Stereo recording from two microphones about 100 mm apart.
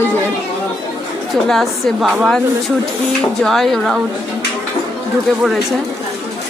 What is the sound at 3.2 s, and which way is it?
Speech, 5° left (ahead or behind).